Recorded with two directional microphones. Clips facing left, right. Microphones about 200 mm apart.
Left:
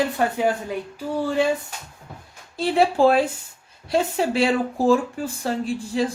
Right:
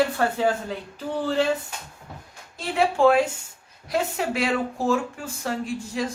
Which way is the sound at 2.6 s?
35° left (ahead or behind).